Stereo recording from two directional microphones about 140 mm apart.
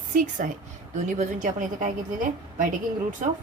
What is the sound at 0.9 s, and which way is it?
A woman's voice, 60° right (ahead or behind).